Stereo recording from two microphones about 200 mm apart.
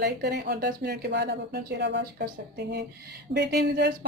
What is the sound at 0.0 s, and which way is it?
A woman's voice, 55° right (ahead or behind).